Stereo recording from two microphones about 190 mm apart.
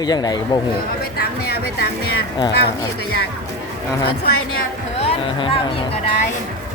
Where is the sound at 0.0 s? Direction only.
20° left (ahead or behind).